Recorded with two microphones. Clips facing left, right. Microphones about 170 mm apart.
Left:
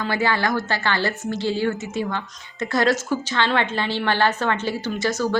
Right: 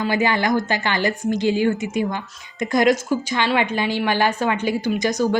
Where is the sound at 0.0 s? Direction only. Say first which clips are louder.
Right 2 dB; 15° right (ahead or behind).